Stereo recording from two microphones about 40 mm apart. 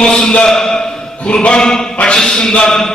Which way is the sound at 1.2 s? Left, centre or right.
Left.